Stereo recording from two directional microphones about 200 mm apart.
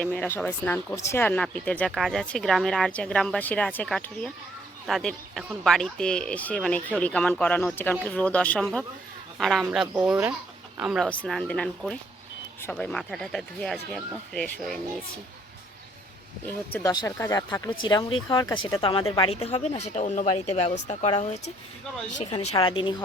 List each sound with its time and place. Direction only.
0.0 s speech: 5° left (ahead or behind)
16.5 s speech: 10° left (ahead or behind); by 23.0 s 25° left (ahead or behind)